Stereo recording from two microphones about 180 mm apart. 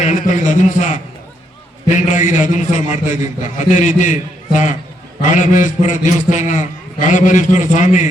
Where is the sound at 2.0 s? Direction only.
45° left (ahead or behind).